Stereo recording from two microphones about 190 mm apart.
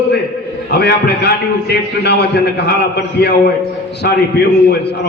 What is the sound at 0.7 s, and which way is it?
A man's voice, 60° left (ahead or behind).